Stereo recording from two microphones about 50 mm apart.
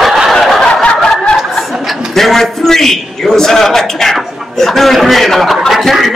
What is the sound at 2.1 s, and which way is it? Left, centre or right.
A man's voice, centre.